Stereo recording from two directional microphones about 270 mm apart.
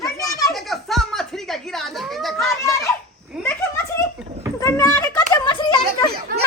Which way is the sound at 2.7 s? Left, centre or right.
Centre.